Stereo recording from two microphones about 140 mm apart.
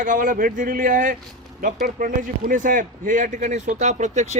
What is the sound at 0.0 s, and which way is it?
A man's voice, 70° right (ahead or behind).